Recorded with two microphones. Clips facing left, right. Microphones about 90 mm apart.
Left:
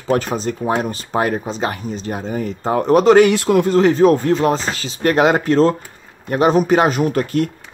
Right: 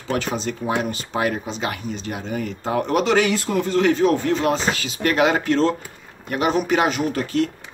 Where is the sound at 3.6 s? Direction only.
35° left (ahead or behind).